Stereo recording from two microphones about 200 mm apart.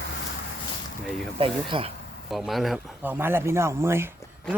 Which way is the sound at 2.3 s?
Centre (ahead or behind).